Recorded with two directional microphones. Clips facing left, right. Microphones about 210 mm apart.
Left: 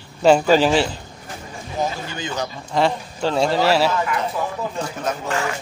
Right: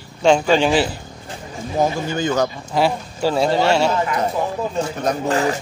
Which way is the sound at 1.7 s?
45° right (ahead or behind).